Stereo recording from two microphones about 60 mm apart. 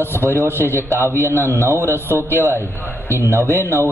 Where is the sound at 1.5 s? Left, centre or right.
Right.